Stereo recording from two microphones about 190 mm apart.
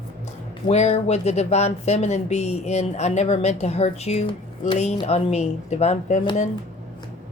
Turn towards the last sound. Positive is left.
turn(degrees=35)  # may be behind; listen again after turning